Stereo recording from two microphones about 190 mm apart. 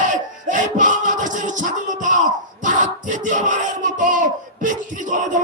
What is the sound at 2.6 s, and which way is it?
Battle cry, 40° right (ahead or behind).